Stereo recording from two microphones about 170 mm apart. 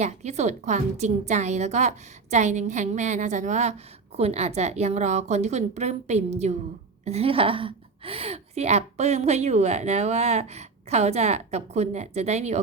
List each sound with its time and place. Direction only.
0.0 s a woman's voice: 40° right (ahead or behind)